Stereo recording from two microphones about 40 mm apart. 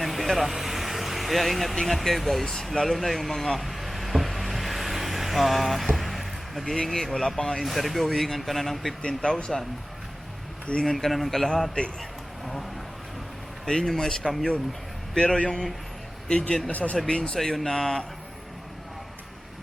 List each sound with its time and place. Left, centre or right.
0.0 s vehicle: centre
1.7 s a man's voice: centre
2.0 s speech: centre
3.6 s vehicle: centre
6.9 s a man's voice: centre
7.6 s speech: centre
9.0 s speech: left
10.8 s a man's voice: centre
13.7 s a man's voice: centre
16.7 s speech: left
17.1 s speech: left
17.3 s a man's voice: centre